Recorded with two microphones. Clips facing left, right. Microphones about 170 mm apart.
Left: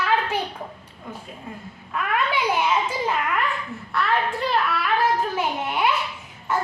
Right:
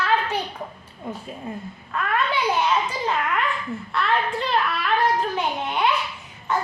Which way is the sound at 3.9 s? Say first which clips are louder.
Even; centre (ahead or behind).